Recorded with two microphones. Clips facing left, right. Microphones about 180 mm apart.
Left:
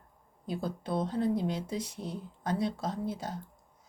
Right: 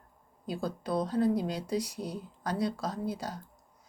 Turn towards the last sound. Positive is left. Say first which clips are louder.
# even
turn(degrees=25)  # may be behind; listen again after turning